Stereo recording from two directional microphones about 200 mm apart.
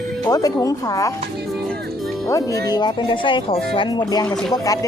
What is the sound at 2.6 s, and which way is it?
A woman's voice, 20° left (ahead or behind).